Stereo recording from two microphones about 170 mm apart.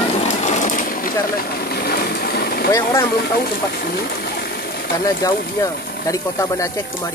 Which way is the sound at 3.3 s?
65° left (ahead or behind).